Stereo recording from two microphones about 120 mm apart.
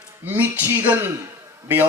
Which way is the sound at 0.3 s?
15° right (ahead or behind).